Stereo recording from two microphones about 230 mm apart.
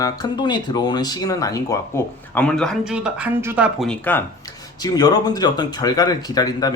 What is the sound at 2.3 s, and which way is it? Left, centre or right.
Speech, centre.